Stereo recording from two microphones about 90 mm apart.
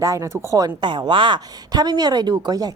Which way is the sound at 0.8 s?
60° right (ahead or behind).